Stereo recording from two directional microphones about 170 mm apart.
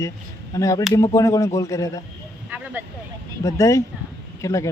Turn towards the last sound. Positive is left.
turn(degrees=20)  # may be behind; listen again after turning